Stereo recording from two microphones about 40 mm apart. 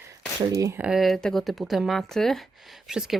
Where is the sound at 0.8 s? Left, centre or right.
Right.